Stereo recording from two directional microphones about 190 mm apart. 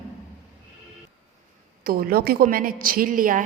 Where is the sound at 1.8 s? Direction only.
50° right (ahead or behind).